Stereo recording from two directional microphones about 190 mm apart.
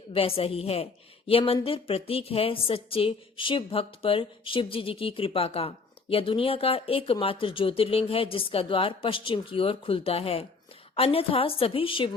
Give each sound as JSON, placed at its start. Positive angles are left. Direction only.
{"t": 0.1, "sound": "a woman's voice", "side_deg": 30}